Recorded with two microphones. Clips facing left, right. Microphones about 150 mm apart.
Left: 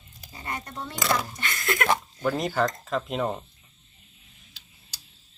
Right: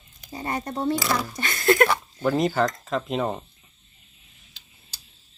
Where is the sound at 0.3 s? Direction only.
35° right (ahead or behind).